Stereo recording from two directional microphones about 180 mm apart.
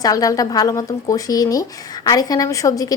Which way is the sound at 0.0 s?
20° left (ahead or behind).